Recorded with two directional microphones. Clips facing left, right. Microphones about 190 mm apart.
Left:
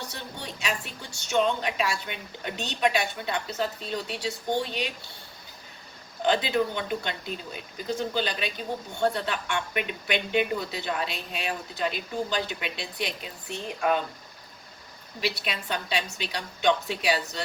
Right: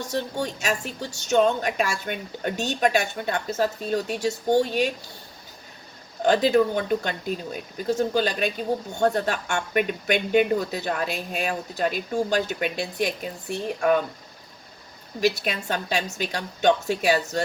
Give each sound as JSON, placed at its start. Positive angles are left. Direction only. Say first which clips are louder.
{"t": 0.0, "sound": "a woman's voice", "louder": "right 11 dB", "side_deg": -45}
{"t": 6.2, "sound": "a woman's voice", "louder": "right 6 dB", "side_deg": -45}
{"t": 15.2, "sound": "a woman's voice", "louder": "right 7 dB", "side_deg": -45}